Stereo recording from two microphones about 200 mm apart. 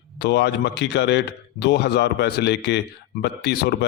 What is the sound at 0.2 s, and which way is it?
A man's voice, 55° left (ahead or behind).